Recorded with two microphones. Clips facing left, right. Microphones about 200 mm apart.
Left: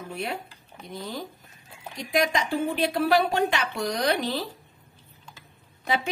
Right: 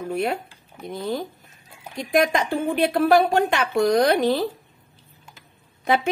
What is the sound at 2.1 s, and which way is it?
Speech, 55° right (ahead or behind).